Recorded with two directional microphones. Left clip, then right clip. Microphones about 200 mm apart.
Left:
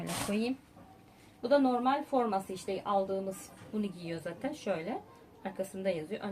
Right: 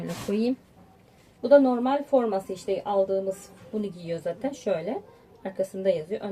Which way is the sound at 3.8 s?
10° right (ahead or behind).